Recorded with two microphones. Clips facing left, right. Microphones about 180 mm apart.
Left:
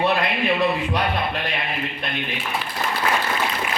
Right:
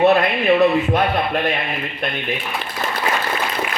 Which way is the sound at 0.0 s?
45° right (ahead or behind).